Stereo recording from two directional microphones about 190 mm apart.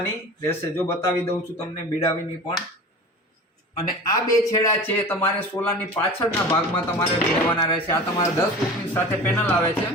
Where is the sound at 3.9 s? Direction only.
20° left (ahead or behind).